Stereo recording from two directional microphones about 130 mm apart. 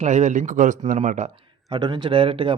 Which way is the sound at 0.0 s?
65° right (ahead or behind).